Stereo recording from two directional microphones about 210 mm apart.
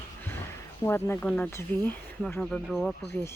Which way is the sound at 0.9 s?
10° left (ahead or behind).